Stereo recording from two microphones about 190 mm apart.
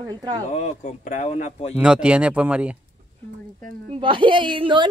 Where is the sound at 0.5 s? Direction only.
40° left (ahead or behind).